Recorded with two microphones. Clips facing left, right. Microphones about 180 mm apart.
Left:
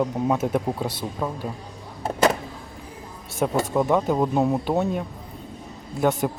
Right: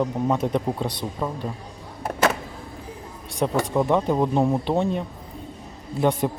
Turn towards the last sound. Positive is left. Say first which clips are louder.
# even
turn(degrees=0)  # may be behind; listen again after turning